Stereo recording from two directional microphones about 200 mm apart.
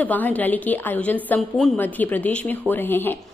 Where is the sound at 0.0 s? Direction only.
10° left (ahead or behind).